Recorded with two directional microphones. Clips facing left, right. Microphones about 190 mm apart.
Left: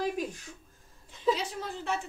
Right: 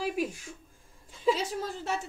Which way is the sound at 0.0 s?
10° right (ahead or behind).